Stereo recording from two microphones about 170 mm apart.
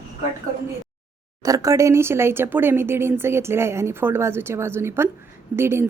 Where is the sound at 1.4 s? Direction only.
20° right (ahead or behind).